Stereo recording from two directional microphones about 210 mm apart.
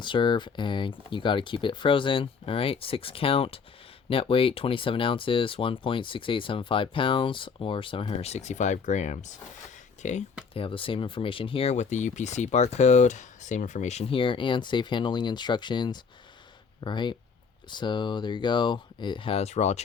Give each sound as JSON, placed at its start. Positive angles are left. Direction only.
{"t": 0.0, "sound": "speech", "side_deg": 20}